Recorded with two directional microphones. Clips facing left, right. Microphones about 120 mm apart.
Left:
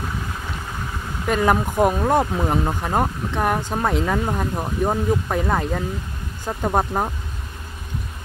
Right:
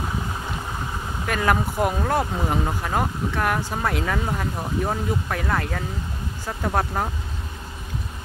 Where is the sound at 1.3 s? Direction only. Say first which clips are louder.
Left 4 dB; 20° left (ahead or behind).